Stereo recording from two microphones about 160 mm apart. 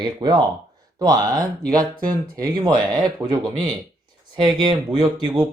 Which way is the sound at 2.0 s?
65° right (ahead or behind).